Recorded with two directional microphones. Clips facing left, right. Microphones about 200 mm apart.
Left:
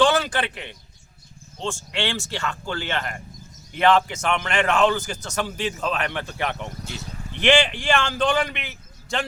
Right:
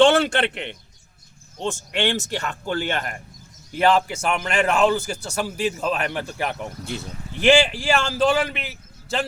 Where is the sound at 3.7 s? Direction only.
5° right (ahead or behind).